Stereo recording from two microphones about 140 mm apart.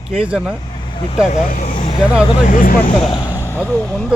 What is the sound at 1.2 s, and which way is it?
Speech, 60° left (ahead or behind).